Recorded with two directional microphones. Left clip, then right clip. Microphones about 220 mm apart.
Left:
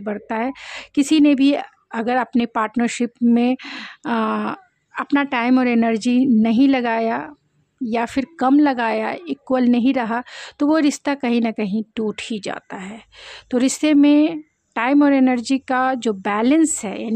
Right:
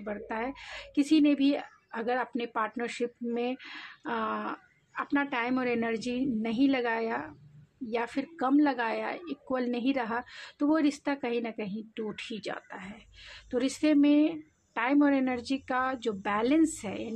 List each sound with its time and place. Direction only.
0.0 s a woman's voice: 40° left (ahead or behind)